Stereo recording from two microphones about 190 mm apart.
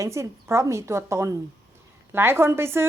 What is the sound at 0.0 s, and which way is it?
Speech, 15° right (ahead or behind).